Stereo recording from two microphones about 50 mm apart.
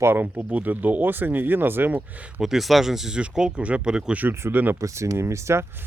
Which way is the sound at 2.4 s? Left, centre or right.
Centre.